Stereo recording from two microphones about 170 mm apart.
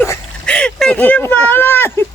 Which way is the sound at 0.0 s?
10° left (ahead or behind).